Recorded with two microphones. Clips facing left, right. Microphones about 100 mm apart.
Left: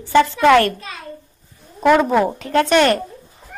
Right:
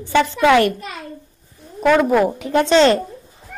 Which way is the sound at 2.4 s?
15° right (ahead or behind).